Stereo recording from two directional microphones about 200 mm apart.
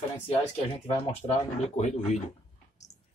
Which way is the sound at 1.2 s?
35° left (ahead or behind).